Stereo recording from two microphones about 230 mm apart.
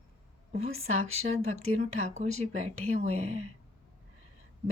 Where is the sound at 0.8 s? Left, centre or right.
Right.